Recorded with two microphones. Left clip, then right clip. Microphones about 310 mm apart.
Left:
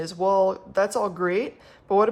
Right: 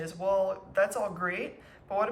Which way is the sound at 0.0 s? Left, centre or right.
Centre.